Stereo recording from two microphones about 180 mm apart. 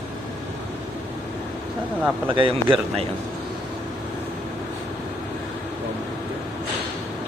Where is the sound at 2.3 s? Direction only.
30° right (ahead or behind).